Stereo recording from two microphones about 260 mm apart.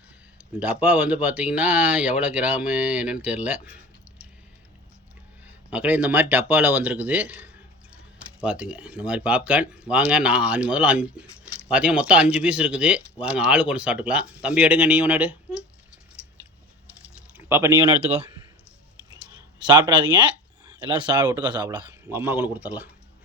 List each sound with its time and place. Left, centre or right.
0.3 s speech: centre
5.5 s speech: centre
17.2 s a sound: centre
19.5 s speech: centre